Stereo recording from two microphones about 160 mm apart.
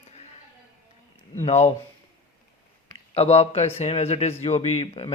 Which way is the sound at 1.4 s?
45° left (ahead or behind).